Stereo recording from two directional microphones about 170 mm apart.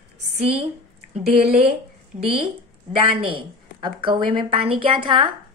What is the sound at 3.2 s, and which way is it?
A woman's voice, 30° right (ahead or behind).